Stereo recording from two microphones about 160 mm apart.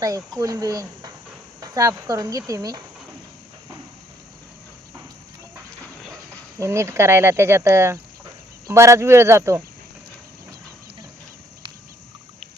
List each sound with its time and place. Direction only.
0.3 s speech: 20° right (ahead or behind)
6.6 s speech: 15° right (ahead or behind)